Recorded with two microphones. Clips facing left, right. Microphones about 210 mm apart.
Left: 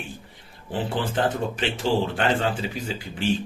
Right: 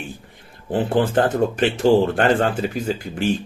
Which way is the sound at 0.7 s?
50° right (ahead or behind).